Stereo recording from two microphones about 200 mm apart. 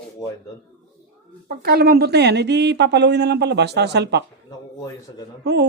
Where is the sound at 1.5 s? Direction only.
50° right (ahead or behind).